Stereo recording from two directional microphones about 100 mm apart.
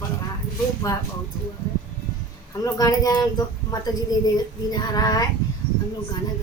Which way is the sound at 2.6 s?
35° left (ahead or behind).